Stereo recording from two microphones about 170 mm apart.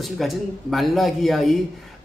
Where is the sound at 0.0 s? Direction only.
Centre (ahead or behind).